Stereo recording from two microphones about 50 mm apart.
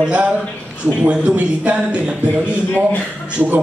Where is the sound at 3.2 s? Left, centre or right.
Right.